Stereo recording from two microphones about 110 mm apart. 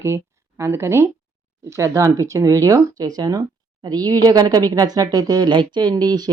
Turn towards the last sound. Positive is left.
turn(degrees=-40)  # may be behind; listen again after turning